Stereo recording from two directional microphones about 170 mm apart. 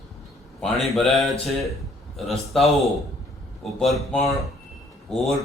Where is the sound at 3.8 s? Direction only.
Centre (ahead or behind).